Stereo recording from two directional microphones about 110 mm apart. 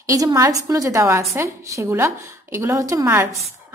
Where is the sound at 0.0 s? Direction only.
30° right (ahead or behind).